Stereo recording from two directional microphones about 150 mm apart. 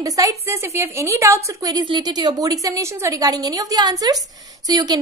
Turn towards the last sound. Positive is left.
turn(degrees=-25)  # may be behind; listen again after turning